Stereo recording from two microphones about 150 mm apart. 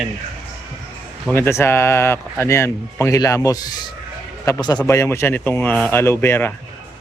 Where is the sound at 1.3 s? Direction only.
15° left (ahead or behind).